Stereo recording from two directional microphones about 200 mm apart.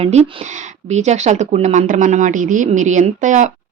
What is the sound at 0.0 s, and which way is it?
A woman's voice, 30° right (ahead or behind).